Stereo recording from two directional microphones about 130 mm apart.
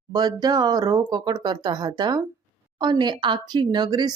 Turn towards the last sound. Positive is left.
turn(degrees=-30)  # may be behind; listen again after turning